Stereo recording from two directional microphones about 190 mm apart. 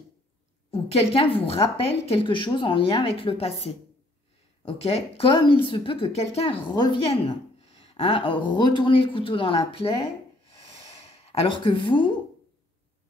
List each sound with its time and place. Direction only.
0.7 s speech: 30° left (ahead or behind)
11.2 s speech: 30° left (ahead or behind)